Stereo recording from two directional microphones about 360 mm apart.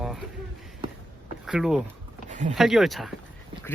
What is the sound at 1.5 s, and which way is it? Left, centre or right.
Speech, centre.